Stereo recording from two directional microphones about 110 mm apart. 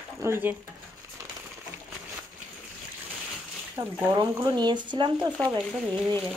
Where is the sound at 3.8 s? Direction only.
40° right (ahead or behind).